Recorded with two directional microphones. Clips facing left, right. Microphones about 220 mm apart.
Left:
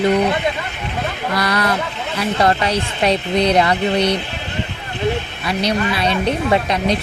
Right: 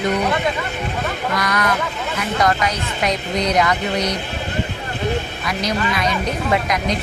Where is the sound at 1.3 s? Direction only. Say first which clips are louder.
Left 3 dB; 30° left (ahead or behind).